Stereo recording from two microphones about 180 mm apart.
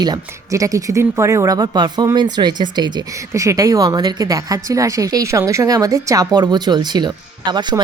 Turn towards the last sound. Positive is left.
turn(degrees=-25)  # may be behind; listen again after turning